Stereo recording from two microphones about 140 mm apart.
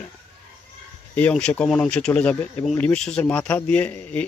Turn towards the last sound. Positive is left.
turn(degrees=15)  # may be behind; listen again after turning